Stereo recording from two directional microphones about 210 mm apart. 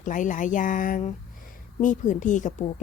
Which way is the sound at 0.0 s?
35° left (ahead or behind).